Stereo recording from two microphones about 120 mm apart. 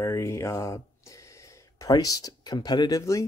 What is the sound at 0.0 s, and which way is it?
Speech, 25° left (ahead or behind).